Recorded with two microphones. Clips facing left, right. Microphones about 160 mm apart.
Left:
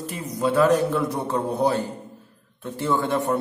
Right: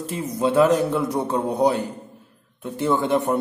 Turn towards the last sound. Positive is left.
turn(degrees=-20)  # may be behind; listen again after turning